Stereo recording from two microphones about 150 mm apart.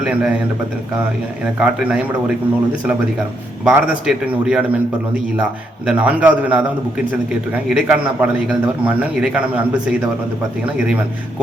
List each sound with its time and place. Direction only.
0.0 s a man's voice: 5° right (ahead or behind)
1.5 s a man's voice: 10° right (ahead or behind)
3.6 s a man's voice: 5° right (ahead or behind)